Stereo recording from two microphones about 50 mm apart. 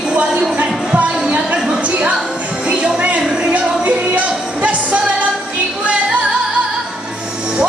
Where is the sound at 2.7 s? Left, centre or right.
Right.